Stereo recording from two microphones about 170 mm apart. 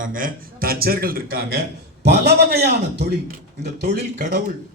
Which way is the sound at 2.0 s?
80° right.